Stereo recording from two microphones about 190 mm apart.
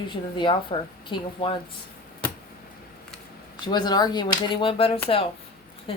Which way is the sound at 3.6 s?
20° left (ahead or behind).